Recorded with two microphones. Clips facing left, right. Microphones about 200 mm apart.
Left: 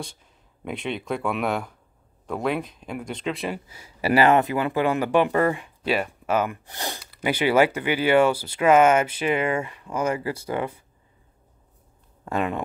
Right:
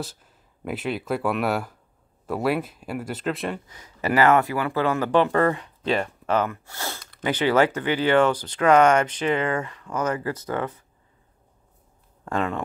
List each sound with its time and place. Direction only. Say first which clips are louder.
0.7 s speech: right 2 dB; 5° right (ahead or behind)
12.3 s speech: even; 15° left (ahead or behind)